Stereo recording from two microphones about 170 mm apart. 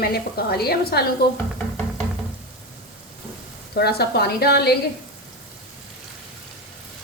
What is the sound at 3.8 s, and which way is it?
Speech, 70° left (ahead or behind).